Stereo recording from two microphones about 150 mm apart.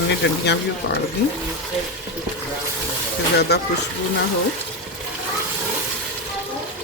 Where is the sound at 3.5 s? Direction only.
90° left.